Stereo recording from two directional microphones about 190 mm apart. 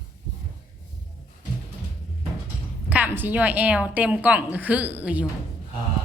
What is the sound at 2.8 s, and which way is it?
A woman's voice, 10° right (ahead or behind).